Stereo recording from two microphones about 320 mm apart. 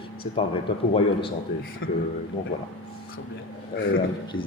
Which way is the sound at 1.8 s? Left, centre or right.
Left.